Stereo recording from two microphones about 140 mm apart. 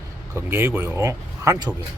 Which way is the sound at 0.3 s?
15° right (ahead or behind).